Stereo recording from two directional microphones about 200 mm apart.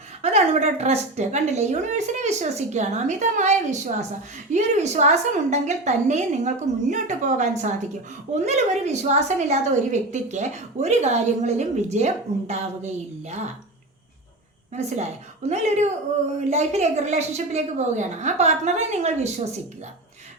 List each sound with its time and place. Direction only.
0.2 s a woman's voice: 35° right (ahead or behind)
15.4 s a woman's voice: 35° right (ahead or behind)